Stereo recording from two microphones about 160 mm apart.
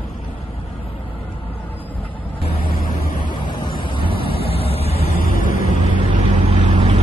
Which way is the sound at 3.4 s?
30° left (ahead or behind).